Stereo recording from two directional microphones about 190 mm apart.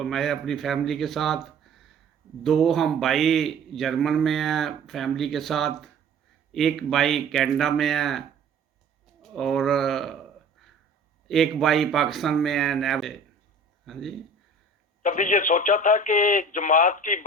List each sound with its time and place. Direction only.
0.0 s a man's voice: centre (ahead or behind)
9.2 s a man's voice: centre (ahead or behind)
11.3 s a man's voice: centre (ahead or behind)
15.0 s speech: 45° left (ahead or behind)